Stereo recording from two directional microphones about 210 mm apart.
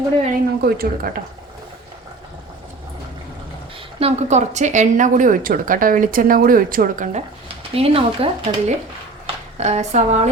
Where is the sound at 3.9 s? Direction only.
30° right (ahead or behind).